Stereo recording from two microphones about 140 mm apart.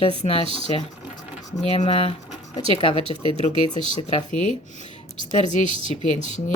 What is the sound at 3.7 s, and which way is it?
Speech, 40° right (ahead or behind).